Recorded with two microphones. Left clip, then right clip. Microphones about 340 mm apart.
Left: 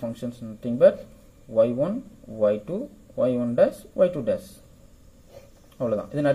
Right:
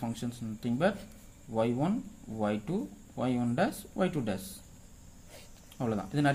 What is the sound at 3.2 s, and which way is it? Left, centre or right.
Speech, centre.